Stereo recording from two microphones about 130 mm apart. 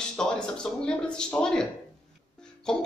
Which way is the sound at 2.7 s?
5° left (ahead or behind).